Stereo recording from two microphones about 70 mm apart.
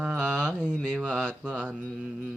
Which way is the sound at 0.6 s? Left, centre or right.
Centre.